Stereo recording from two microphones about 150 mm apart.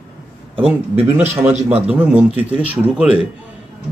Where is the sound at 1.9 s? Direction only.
10° right (ahead or behind).